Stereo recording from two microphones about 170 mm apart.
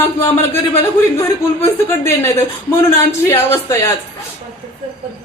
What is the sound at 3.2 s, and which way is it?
Speech, 20° left (ahead or behind).